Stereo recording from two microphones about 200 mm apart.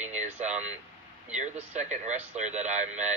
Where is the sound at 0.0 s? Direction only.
35° right (ahead or behind).